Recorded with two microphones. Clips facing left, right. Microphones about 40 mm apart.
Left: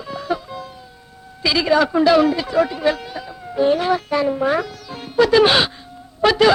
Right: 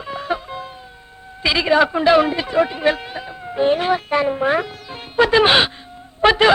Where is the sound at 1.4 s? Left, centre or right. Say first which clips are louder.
Right 1 dB; right.